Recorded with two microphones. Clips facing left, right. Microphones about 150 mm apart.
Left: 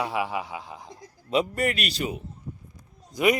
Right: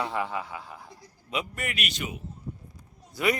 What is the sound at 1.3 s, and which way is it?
Speech, 35° left (ahead or behind).